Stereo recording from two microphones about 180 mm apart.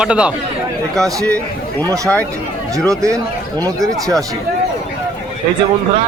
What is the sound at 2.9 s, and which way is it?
Speech, 15° right (ahead or behind).